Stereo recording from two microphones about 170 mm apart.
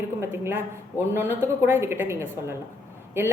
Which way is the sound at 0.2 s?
15° right (ahead or behind).